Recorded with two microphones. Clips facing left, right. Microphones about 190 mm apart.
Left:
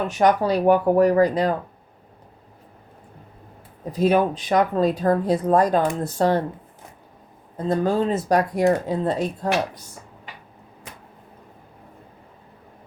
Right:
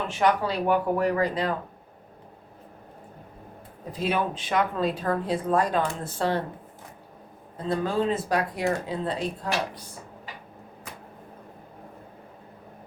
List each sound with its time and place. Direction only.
0.1 s speech: 40° left (ahead or behind)
3.9 s speech: 40° left (ahead or behind)
7.7 s speech: 45° left (ahead or behind)